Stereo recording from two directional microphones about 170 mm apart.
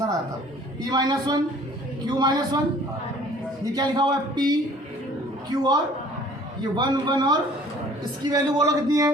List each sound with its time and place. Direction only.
0.8 s a man's voice: 25° right (ahead or behind)
3.7 s a man's voice: 25° right (ahead or behind)